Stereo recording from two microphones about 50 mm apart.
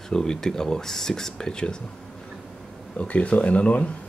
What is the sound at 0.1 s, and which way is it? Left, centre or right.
Speech, centre.